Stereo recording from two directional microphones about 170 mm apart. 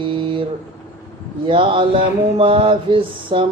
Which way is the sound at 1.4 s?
30° right (ahead or behind).